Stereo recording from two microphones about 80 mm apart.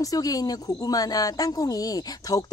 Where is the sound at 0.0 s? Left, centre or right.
Left.